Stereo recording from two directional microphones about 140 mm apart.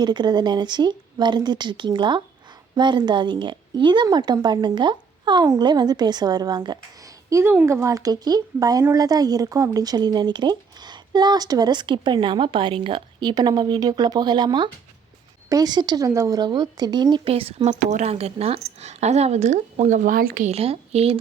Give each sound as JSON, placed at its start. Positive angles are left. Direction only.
{"t": 0.0, "sound": "a woman's voice", "side_deg": -30}
{"t": 17.7, "sound": "speech", "side_deg": -60}
{"t": 20.5, "sound": "speech", "side_deg": -45}